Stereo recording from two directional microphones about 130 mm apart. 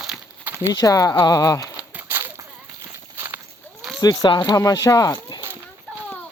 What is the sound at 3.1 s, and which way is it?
Walk, 20° right (ahead or behind).